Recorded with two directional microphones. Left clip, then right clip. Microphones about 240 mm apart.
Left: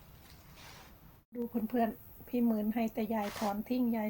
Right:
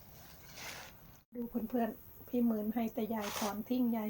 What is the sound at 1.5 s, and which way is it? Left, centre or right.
Speech, left.